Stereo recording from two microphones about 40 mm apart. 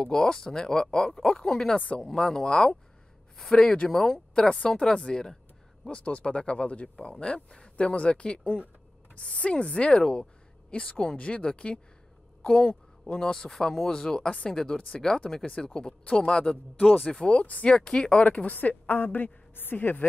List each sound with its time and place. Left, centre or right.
0.0 s speech: centre
5.9 s a woman's voice: left
16.7 s speech: left
17.2 s a woman's voice: left
19.5 s a woman's voice: left